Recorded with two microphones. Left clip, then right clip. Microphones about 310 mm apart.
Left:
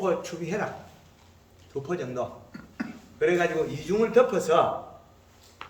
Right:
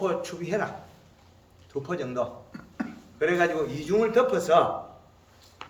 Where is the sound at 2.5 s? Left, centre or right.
Right.